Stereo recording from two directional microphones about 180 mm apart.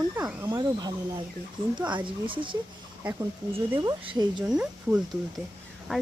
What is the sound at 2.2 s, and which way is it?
Speech, 30° right (ahead or behind).